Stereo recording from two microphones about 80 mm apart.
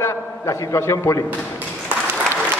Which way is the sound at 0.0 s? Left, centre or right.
Left.